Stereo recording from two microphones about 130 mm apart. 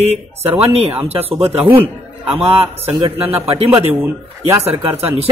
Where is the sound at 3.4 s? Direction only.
50° right (ahead or behind).